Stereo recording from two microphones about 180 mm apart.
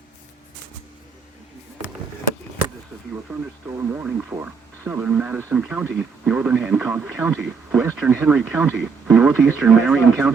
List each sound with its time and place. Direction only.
3.3 s speech: 10° right (ahead or behind)